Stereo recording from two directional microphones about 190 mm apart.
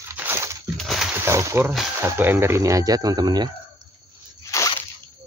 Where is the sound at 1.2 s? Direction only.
15° right (ahead or behind).